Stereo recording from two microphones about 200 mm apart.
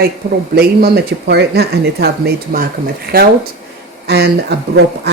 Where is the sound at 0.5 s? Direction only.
50° right (ahead or behind).